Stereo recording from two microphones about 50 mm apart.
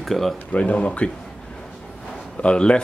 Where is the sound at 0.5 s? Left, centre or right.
Left.